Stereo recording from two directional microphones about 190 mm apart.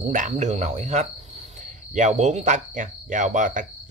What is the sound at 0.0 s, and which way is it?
Speech, 40° right (ahead or behind).